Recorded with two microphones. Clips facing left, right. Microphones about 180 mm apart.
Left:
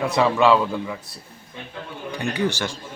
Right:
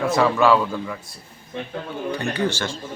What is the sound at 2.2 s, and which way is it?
Speech, 15° left (ahead or behind).